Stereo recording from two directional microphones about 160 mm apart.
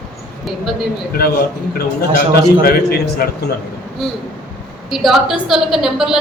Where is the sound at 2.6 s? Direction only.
70° left (ahead or behind).